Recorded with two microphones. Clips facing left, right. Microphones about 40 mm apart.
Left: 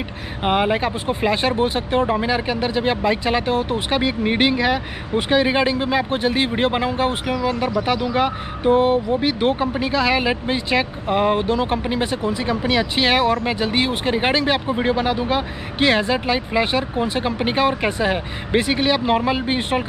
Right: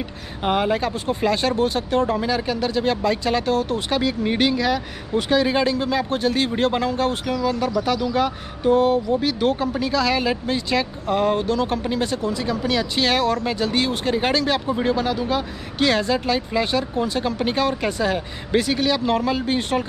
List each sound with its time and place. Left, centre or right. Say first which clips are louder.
0.4 s speech: left 2 dB; left